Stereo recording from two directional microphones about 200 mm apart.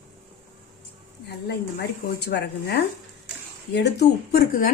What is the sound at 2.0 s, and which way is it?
Speech, 55° left (ahead or behind).